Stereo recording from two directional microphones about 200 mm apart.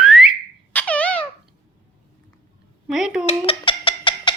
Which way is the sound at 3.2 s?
25° left (ahead or behind).